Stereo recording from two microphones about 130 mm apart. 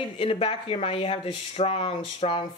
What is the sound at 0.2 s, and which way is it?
Speech, 50° left (ahead or behind).